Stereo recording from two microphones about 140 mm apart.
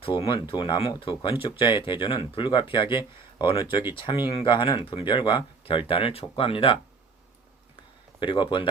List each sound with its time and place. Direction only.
0.0 s speech: 40° left (ahead or behind)
8.2 s speech: 35° left (ahead or behind)